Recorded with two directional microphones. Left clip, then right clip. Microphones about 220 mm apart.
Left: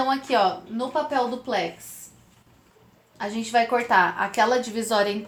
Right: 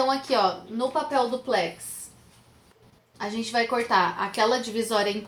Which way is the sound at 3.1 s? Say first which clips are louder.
Left 4 dB; 30° left (ahead or behind).